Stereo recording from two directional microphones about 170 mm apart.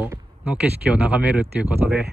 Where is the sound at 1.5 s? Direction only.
10° right (ahead or behind).